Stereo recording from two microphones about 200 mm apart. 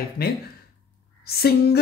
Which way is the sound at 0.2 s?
50° left (ahead or behind).